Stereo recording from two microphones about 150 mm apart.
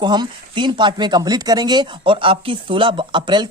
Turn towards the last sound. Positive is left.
turn(degrees=-30)  # may be behind; listen again after turning